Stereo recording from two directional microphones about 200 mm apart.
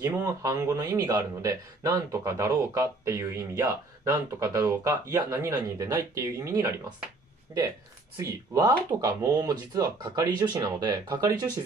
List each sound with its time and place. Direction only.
0.0 s a man's voice: 15° right (ahead or behind)
8.2 s speech: 15° right (ahead or behind)